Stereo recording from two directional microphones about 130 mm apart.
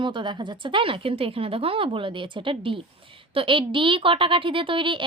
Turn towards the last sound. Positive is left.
turn(degrees=-40)  # may be behind; listen again after turning